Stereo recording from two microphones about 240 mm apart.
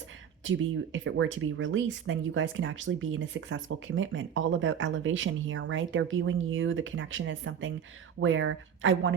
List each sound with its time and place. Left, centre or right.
0.4 s speech: right